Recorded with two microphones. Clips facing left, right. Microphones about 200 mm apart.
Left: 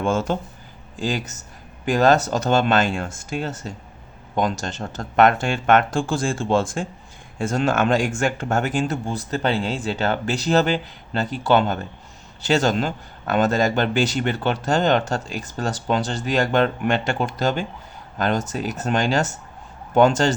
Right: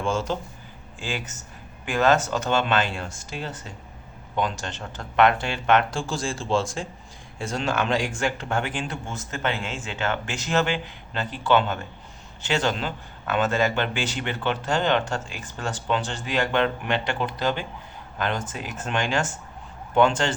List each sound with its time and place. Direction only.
0.0 s speech: 55° left (ahead or behind)
0.9 s speech: 40° left (ahead or behind)